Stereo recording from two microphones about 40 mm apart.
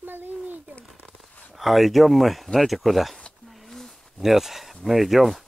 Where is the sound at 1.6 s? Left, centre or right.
Centre.